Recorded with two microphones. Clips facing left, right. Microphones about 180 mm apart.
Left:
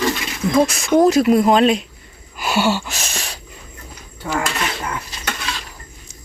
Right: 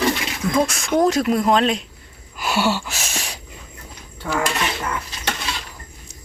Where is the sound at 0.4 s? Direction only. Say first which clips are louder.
Left 4 dB; 20° left (ahead or behind).